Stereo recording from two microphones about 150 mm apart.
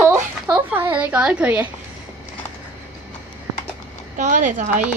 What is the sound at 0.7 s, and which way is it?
A woman's voice, 15° right (ahead or behind).